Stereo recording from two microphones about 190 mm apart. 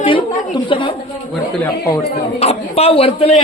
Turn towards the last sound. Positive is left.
turn(degrees=30)  # may be behind; listen again after turning